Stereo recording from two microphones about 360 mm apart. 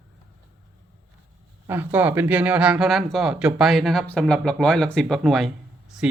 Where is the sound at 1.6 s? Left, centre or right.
Centre.